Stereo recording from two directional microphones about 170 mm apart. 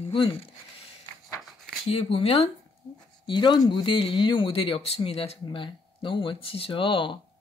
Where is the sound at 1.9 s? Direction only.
35° left (ahead or behind).